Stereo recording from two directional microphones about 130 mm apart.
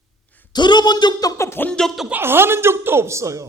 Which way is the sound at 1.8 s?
Centre (ahead or behind).